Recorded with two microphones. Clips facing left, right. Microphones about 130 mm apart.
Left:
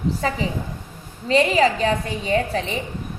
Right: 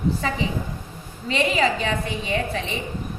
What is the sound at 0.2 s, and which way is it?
A woman's voice, 40° left (ahead or behind).